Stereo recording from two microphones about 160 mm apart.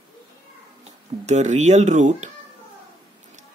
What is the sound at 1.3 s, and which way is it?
Speech, 45° right (ahead or behind).